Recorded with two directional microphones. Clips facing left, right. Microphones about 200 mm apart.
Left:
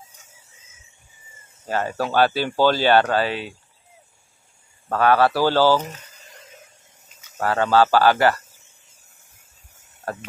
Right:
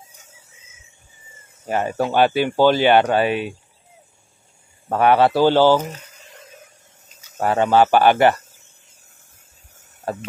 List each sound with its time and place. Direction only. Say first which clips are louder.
1.7 s speech: right 3 dB; 15° right (ahead or behind)
4.8 s speech: right 2 dB; 20° right (ahead or behind)
7.3 s speech: right 2 dB; 20° right (ahead or behind)
10.1 s speech: right 4 dB; 20° right (ahead or behind)